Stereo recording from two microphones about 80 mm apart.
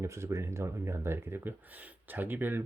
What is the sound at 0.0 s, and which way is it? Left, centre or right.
Speech, right.